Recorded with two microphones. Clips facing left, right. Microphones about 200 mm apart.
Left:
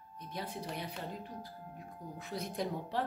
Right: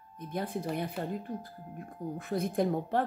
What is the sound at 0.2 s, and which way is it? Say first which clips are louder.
Speech: right 7 dB; 50° right (ahead or behind).